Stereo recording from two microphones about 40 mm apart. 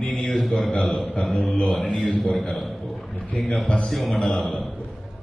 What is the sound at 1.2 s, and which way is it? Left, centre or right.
A man's voice, centre.